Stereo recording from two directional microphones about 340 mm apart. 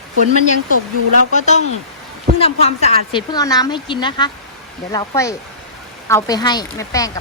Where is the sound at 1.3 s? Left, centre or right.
Centre.